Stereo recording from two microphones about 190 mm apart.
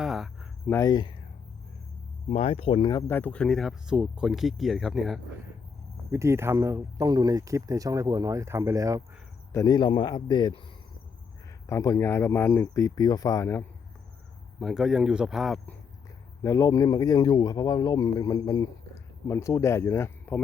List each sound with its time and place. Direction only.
0.0 s cricket: centre (ahead or behind)
0.7 s speech: 15° left (ahead or behind)
2.3 s speech: 35° left (ahead or behind)
3.1 s speech: 10° left (ahead or behind)
6.1 s speech: 15° right (ahead or behind)
9.5 s speech: 15° left (ahead or behind)
11.6 s speech: 15° left (ahead or behind)
14.6 s speech: centre (ahead or behind)
16.4 s speech: 15° left (ahead or behind)